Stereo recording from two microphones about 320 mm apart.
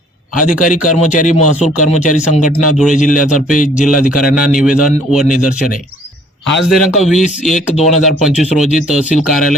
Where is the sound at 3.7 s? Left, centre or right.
Centre.